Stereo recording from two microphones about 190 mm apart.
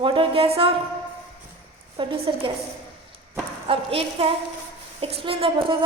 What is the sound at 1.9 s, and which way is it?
Speech, 30° right (ahead or behind).